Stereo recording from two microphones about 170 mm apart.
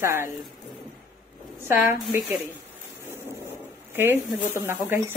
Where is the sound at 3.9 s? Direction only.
10° right (ahead or behind).